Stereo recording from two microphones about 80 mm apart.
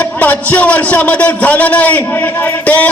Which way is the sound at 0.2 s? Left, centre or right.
Centre.